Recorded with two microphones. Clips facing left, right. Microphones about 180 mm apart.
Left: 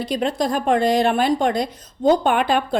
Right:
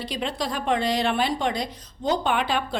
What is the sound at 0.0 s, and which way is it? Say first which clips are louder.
A woman's voice: left 7 dB; 45° left (ahead or behind).